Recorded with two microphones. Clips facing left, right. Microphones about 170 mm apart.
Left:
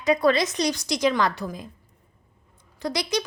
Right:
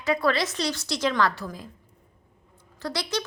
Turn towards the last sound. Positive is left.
turn(degrees=15)  # may be behind; listen again after turning